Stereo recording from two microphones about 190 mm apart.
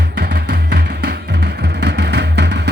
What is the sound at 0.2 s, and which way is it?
Music, 60° right (ahead or behind).